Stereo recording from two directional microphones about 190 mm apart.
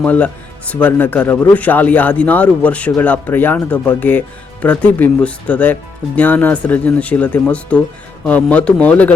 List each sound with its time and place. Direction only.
0.0 s speech: 10° left (ahead or behind)